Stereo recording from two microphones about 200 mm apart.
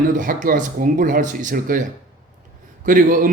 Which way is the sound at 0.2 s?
45° right (ahead or behind).